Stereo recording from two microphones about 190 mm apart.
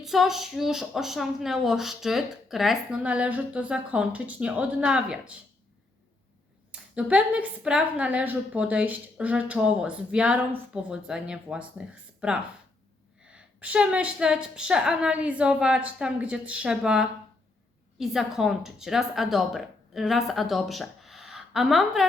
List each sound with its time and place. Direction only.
0.0 s a woman's voice: centre (ahead or behind)
6.7 s a woman's voice: 5° right (ahead or behind)